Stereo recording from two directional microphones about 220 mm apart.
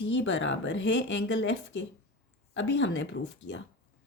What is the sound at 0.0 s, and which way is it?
Speech, 55° left (ahead or behind).